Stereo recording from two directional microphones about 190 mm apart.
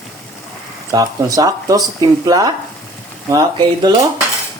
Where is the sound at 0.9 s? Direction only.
20° right (ahead or behind).